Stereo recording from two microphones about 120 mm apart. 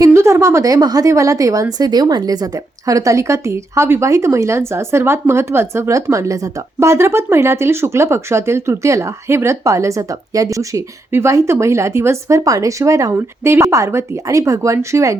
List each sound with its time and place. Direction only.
0.0 s a woman's voice: 20° right (ahead or behind)